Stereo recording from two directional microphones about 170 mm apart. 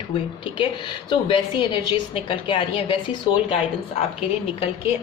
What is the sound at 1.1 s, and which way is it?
A woman's voice, 25° left (ahead or behind).